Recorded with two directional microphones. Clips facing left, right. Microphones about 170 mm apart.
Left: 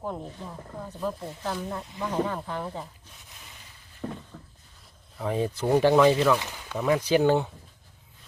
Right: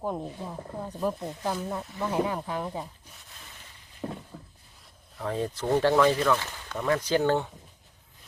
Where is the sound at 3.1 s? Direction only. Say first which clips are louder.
Even; 10° right (ahead or behind).